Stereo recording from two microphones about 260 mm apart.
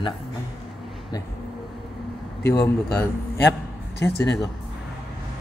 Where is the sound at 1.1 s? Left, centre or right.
Centre.